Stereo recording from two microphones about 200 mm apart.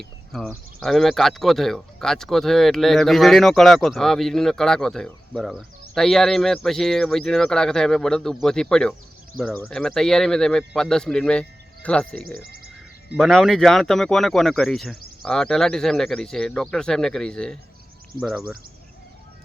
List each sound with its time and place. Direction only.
0.0 s speech: centre (ahead or behind)
12.1 s speech: 50° right (ahead or behind)
13.1 s speech: centre (ahead or behind)